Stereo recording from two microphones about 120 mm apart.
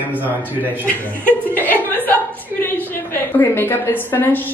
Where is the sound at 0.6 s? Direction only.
15° left (ahead or behind).